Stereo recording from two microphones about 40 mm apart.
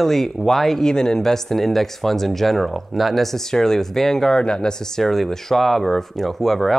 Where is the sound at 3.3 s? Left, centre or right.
Centre.